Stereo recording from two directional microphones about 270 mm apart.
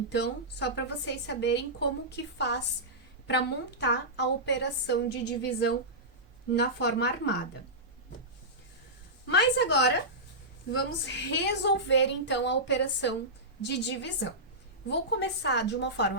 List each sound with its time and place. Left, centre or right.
0.1 s a woman's voice: left
9.3 s a woman's voice: left